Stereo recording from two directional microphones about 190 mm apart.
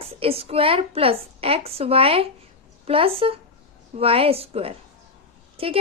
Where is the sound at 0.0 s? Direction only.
30° right (ahead or behind).